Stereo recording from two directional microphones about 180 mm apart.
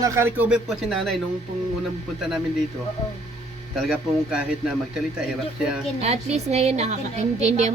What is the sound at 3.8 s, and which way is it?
Speech, 5° right (ahead or behind).